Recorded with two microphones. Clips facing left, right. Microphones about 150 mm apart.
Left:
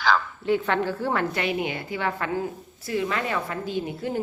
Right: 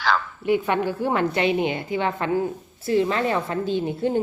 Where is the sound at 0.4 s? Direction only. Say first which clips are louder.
Right 3 dB; 15° right (ahead or behind).